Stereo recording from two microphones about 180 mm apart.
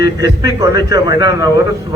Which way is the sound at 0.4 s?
20° right (ahead or behind).